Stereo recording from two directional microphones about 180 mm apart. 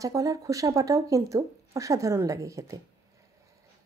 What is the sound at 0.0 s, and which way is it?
A woman's voice, 20° right (ahead or behind).